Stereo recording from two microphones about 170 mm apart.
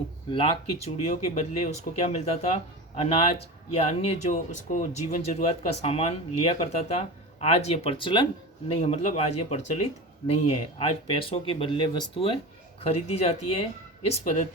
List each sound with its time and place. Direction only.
0.3 s speech: 30° left (ahead or behind)